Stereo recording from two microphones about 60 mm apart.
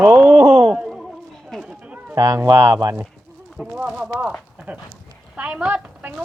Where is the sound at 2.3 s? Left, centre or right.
Right.